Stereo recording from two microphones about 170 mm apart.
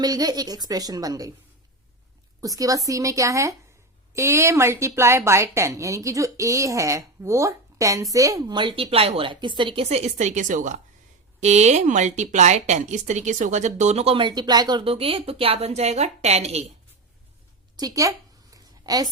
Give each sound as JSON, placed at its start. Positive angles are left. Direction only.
{"t": 0.0, "sound": "a woman's voice", "side_deg": -20}
{"t": 2.4, "sound": "a woman's voice", "side_deg": -20}
{"t": 17.7, "sound": "a woman's voice", "side_deg": -20}
{"t": 18.5, "sound": "a sound", "side_deg": -20}